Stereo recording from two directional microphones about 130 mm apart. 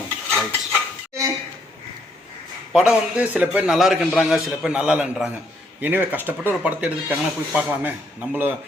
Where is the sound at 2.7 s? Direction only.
5° right (ahead or behind).